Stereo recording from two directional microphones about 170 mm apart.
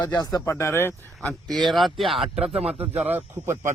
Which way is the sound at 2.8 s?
10° right (ahead or behind).